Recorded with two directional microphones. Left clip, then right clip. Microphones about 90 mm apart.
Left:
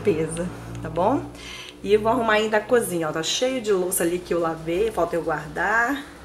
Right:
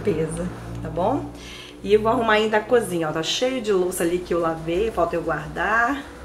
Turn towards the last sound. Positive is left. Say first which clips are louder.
# right 1 dB
turn(degrees=15)  # may be behind; listen again after turning